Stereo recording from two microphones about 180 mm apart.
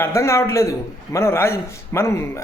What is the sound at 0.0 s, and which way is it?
A man's voice, 15° left (ahead or behind).